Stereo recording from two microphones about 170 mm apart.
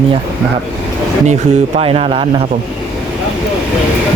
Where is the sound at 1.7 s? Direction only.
35° right (ahead or behind).